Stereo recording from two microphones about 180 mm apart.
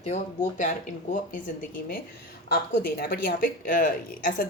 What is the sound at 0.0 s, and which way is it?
A woman's voice, 45° left (ahead or behind).